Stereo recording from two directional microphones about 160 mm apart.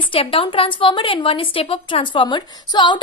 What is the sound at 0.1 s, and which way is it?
A woman's voice, 35° left (ahead or behind).